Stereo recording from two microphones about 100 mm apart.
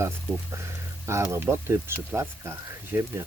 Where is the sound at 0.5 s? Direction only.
25° right (ahead or behind).